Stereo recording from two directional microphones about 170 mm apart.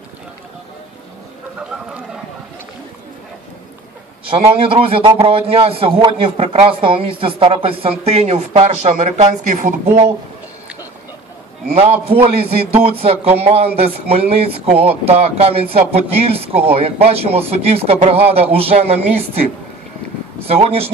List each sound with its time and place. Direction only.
4.3 s a man's voice: 30° right (ahead or behind)
11.7 s a man's voice: 35° right (ahead or behind)
20.4 s a man's voice: 35° right (ahead or behind)